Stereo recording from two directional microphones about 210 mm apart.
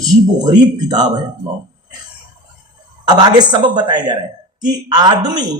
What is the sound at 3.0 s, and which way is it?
Speech, 20° right (ahead or behind).